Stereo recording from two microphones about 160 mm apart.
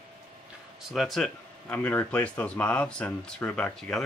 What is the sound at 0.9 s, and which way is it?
Speech, centre (ahead or behind).